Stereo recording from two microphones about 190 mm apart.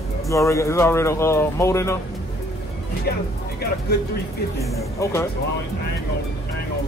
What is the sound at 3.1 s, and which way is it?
Speech, 55° left (ahead or behind).